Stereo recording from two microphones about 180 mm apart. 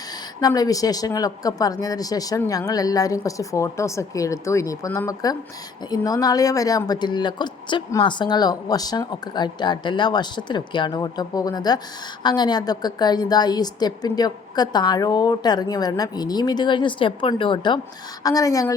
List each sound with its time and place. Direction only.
0.4 s a woman's voice: 20° left (ahead or behind)